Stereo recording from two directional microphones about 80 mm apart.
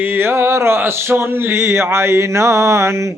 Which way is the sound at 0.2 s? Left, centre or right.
Right.